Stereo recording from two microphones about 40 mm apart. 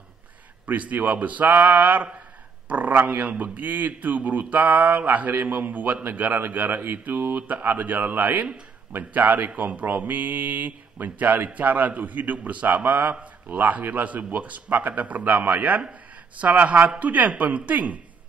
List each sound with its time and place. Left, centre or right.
0.7 s a man's voice: right